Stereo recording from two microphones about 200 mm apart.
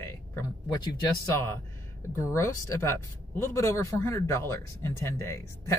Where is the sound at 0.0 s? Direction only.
10° left (ahead or behind).